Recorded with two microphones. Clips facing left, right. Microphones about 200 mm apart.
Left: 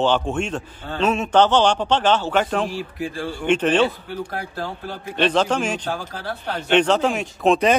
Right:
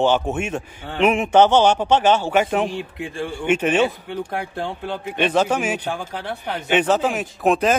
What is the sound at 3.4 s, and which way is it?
Speech, 10° right (ahead or behind).